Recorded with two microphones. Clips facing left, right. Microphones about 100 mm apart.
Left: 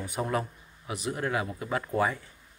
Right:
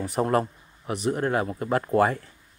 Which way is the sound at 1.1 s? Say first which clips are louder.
Right 6 dB; 40° right (ahead or behind).